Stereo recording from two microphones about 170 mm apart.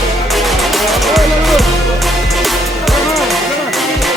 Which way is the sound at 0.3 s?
Centre (ahead or behind).